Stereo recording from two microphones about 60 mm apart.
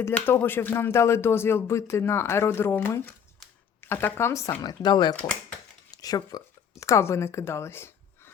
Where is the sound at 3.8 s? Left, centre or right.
Left.